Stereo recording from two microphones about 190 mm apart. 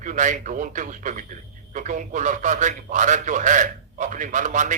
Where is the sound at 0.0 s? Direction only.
40° right (ahead or behind).